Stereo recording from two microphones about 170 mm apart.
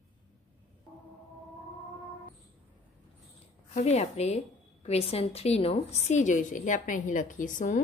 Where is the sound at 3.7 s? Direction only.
40° left (ahead or behind).